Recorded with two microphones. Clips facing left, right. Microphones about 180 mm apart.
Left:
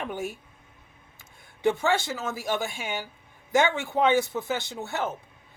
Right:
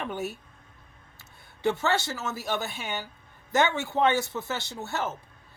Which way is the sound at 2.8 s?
10° left (ahead or behind).